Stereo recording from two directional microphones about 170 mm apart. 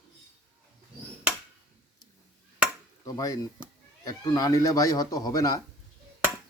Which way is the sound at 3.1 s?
20° left (ahead or behind).